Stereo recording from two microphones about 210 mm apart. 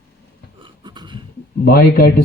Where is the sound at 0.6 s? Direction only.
20° right (ahead or behind).